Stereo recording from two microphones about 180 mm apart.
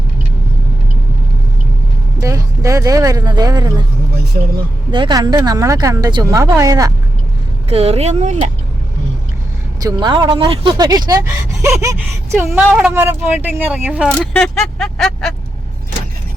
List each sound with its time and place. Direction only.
2.2 s speech: 20° right (ahead or behind)
4.9 s speech: 25° right (ahead or behind)
7.7 s speech: 35° right (ahead or behind)
9.8 s speech: 25° right (ahead or behind); by 14.1 s 5° right (ahead or behind)
14.1 s speech: 5° left (ahead or behind)